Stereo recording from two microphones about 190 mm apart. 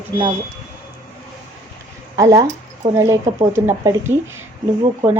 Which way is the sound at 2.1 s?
15° right (ahead or behind).